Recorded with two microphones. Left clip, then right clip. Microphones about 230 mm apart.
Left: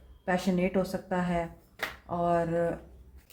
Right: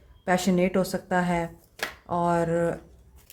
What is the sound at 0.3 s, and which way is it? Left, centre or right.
A woman's voice, right.